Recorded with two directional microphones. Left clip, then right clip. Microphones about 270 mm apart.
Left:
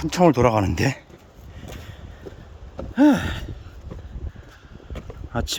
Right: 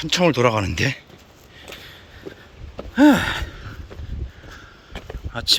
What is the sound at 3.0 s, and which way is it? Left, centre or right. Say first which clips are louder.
Gasp: right 3 dB; centre.